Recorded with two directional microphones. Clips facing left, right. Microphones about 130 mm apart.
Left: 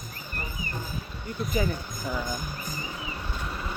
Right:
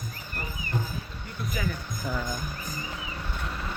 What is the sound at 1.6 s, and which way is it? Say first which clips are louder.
Speech: left 5 dB; 30° left (ahead or behind).